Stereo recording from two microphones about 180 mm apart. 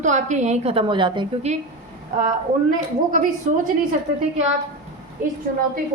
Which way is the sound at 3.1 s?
45° right (ahead or behind).